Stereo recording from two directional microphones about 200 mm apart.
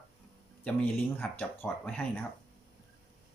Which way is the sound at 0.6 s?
10° left (ahead or behind).